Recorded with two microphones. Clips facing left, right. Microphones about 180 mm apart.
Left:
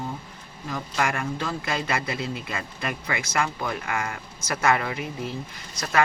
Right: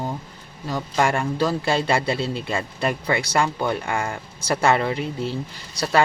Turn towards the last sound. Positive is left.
turn(degrees=-35)  # may be behind; listen again after turning